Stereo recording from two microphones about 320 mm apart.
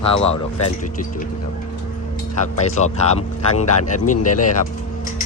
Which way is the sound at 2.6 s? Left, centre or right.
Left.